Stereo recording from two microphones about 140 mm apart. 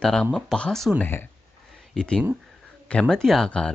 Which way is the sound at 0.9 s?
15° left (ahead or behind).